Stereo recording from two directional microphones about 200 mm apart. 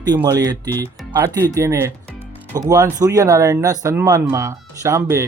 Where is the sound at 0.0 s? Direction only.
20° right (ahead or behind).